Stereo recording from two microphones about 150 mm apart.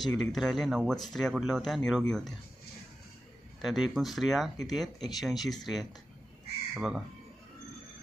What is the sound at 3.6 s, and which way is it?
Speech, centre (ahead or behind).